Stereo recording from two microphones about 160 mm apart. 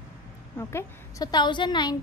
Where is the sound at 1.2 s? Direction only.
25° left (ahead or behind).